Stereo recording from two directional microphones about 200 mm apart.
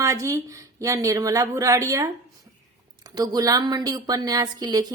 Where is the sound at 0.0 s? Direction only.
15° right (ahead or behind).